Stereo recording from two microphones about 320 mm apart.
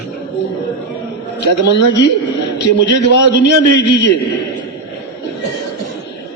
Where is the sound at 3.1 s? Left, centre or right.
Left.